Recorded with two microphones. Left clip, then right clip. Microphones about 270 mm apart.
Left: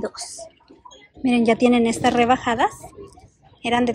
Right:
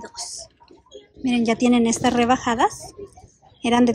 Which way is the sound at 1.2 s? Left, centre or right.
Centre.